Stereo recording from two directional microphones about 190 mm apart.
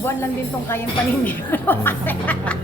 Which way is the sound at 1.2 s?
10° left (ahead or behind).